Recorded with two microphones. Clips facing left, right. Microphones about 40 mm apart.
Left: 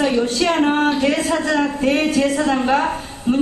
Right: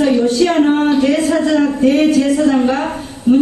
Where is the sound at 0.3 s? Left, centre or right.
Left.